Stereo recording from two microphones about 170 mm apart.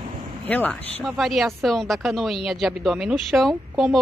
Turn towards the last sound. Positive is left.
turn(degrees=0)  # may be behind; listen again after turning